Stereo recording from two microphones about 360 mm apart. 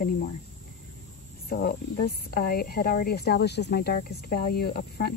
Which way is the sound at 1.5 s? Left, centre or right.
Left.